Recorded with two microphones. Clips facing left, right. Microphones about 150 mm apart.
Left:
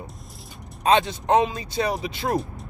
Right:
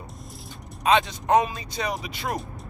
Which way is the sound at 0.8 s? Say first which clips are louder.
Left 2 dB; 30° left (ahead or behind).